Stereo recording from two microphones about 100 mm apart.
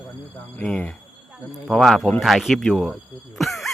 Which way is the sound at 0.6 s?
15° left (ahead or behind).